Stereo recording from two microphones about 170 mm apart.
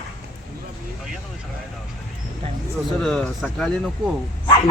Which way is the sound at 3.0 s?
5° left (ahead or behind).